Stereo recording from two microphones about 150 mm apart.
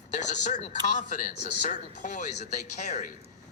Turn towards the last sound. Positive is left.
turn(degrees=55)  # may be behind; listen again after turning